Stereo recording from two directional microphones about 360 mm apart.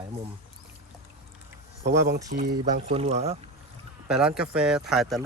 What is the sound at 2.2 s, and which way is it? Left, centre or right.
Speech, right.